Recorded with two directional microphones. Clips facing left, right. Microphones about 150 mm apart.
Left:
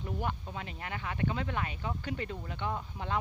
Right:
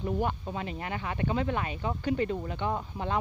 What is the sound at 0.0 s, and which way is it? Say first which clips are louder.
Speech: right 6 dB; 30° right (ahead or behind).